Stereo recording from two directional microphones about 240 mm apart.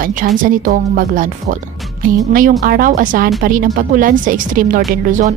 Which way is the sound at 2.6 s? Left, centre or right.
Right.